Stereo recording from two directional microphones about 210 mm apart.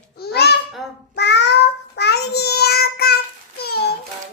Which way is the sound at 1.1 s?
55° left (ahead or behind).